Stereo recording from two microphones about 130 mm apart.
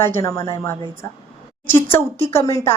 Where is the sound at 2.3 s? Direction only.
25° left (ahead or behind).